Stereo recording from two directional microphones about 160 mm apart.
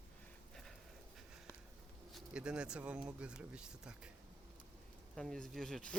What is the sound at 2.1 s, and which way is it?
Speech, 5° right (ahead or behind).